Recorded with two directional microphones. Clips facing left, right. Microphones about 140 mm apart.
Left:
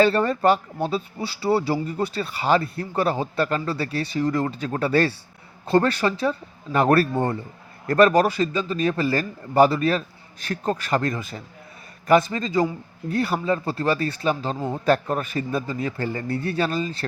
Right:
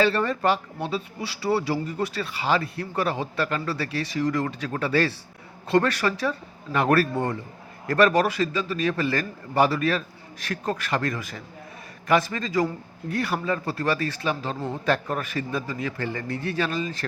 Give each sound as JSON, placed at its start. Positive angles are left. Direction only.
{"t": 0.0, "sound": "a man's voice", "side_deg": 35}
{"t": 2.3, "sound": "speech", "side_deg": 45}
{"t": 2.6, "sound": "a man's voice", "side_deg": 30}